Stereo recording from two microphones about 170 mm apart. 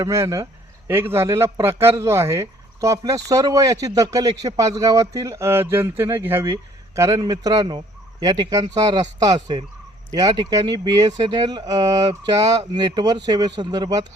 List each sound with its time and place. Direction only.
0.0 s a man's voice: 20° right (ahead or behind)